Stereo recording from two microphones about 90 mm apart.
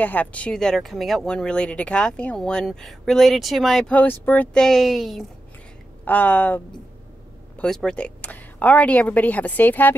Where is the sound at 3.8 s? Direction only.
15° left (ahead or behind).